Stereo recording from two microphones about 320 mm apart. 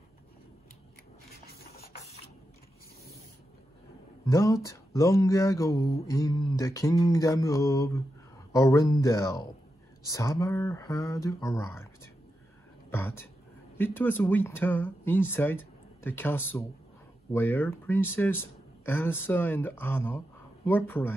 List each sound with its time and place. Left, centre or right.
1.3 s printer: left
4.3 s mantra: centre